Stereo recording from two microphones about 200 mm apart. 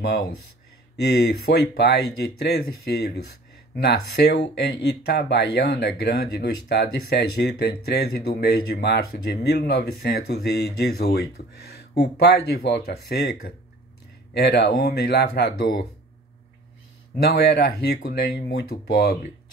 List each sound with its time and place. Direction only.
0.9 s speech: 55° left (ahead or behind)
3.7 s speech: 55° left (ahead or behind)
17.2 s speech: 50° left (ahead or behind)